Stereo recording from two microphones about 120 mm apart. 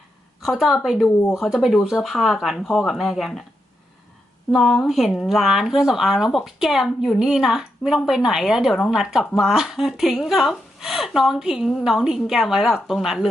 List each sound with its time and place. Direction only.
0.4 s speech: centre (ahead or behind)
4.5 s speech: centre (ahead or behind)